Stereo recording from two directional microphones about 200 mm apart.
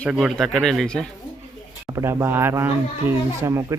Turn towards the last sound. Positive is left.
turn(degrees=-15)  # may be behind; listen again after turning